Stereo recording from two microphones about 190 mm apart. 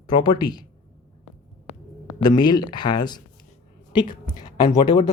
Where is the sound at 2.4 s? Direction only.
20° left (ahead or behind).